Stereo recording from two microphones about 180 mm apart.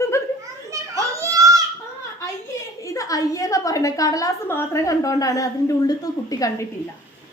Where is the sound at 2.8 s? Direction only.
20° left (ahead or behind).